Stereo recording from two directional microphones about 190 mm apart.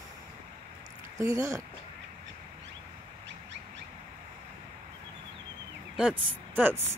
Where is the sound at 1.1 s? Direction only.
15° right (ahead or behind).